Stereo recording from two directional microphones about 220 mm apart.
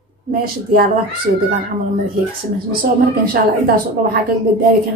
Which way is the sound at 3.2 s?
45° right (ahead or behind).